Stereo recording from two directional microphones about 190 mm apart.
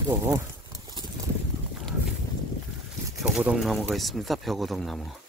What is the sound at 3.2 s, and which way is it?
Speech, 5° right (ahead or behind).